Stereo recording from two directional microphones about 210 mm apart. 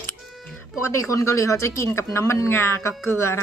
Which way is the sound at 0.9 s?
15° left (ahead or behind).